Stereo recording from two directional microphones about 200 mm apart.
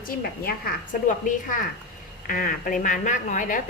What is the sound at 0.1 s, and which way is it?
A woman's voice, 45° left (ahead or behind).